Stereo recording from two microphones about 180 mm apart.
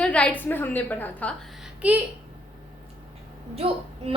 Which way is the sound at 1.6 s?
10° right (ahead or behind).